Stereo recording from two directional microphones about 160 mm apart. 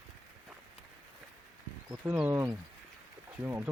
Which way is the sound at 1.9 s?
10° right (ahead or behind).